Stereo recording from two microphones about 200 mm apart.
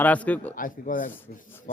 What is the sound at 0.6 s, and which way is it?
Speech, 45° left (ahead or behind).